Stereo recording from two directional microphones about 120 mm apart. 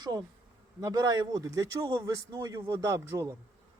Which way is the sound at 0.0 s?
35° right (ahead or behind).